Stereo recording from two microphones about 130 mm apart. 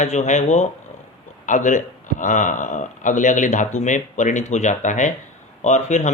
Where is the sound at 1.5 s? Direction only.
75° left (ahead or behind).